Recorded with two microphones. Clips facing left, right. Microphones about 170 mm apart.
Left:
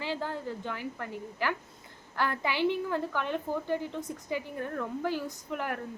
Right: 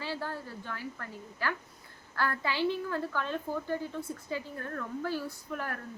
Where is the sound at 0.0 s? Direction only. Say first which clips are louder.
Left 3 dB; 15° left (ahead or behind).